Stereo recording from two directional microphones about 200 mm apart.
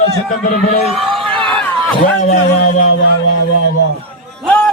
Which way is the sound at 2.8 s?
55° left (ahead or behind).